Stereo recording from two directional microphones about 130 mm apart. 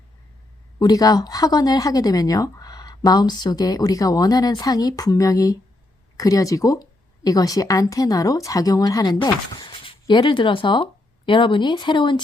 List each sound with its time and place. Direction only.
0.8 s a woman's voice: 30° left (ahead or behind)